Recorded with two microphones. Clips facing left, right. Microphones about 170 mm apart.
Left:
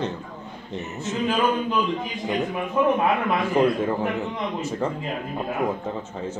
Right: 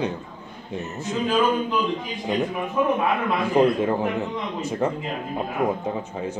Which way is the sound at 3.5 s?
15° right (ahead or behind).